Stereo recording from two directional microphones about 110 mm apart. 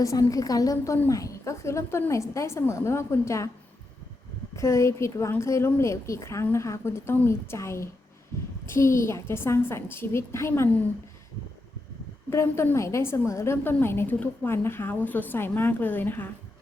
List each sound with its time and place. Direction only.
0.0 s a woman's voice: 30° left (ahead or behind)
4.5 s a woman's voice: 25° left (ahead or behind)
12.3 s a woman's voice: 25° left (ahead or behind)